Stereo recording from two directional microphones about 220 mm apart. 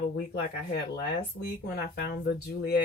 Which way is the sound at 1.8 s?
45° left (ahead or behind).